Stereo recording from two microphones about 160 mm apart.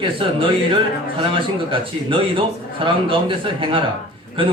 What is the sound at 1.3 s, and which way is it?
A man's voice, 30° right (ahead or behind).